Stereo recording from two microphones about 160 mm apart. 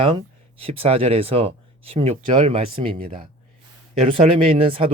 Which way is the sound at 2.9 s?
55° right (ahead or behind).